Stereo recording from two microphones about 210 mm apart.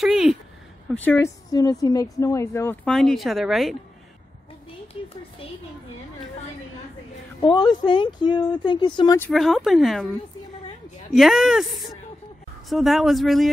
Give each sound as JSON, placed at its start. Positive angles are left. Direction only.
{"t": 0.0, "sound": "a sound", "side_deg": 0}
{"t": 0.9, "sound": "speech", "side_deg": 10}
{"t": 7.5, "sound": "speech", "side_deg": 20}
{"t": 9.2, "sound": "speech", "side_deg": 0}
{"t": 11.1, "sound": "speech", "side_deg": 0}